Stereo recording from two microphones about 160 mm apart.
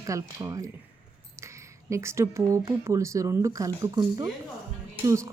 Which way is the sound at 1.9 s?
15° right (ahead or behind).